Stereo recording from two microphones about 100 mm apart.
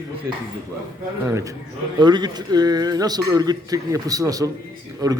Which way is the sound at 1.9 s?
50° right (ahead or behind).